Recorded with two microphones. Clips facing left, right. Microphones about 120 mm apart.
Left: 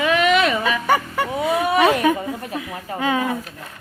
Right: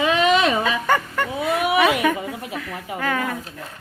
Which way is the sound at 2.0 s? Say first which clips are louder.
Left 2 dB; 15° left (ahead or behind).